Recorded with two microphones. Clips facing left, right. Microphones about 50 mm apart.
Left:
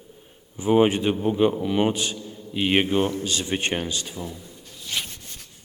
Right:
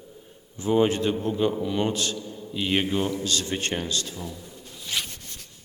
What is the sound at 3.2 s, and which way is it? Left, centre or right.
Speech, left.